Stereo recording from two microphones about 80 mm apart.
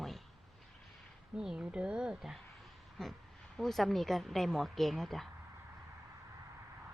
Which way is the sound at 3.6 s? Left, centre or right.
Centre.